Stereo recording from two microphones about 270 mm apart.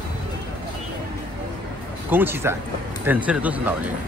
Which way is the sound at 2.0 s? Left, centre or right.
Centre.